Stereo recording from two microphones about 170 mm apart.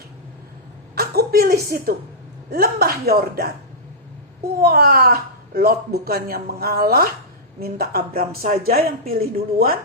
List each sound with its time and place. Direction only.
0.9 s a woman's voice: 65° right (ahead or behind)
4.5 s speech: 60° right (ahead or behind)